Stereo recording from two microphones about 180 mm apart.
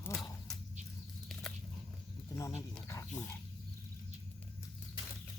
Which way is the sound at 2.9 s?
15° left (ahead or behind).